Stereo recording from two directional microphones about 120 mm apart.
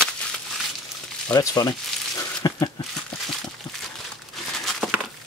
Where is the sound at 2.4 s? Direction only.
30° left (ahead or behind).